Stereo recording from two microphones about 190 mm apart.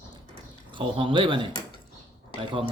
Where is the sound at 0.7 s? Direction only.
25° right (ahead or behind).